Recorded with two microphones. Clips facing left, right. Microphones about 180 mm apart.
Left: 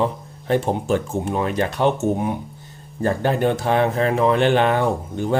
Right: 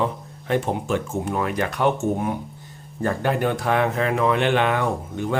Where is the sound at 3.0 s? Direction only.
30° left (ahead or behind).